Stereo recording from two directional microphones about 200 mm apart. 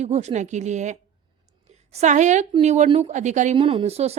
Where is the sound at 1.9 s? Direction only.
35° right (ahead or behind).